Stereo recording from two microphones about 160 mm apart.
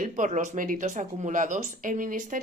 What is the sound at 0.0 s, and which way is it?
Speech, 50° right (ahead or behind).